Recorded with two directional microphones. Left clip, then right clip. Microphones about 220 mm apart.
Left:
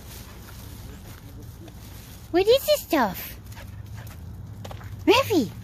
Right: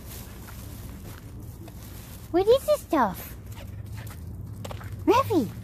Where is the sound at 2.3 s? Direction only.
20° left (ahead or behind).